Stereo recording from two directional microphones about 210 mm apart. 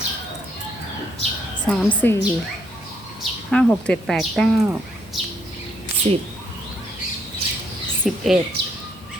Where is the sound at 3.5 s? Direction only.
5° left (ahead or behind).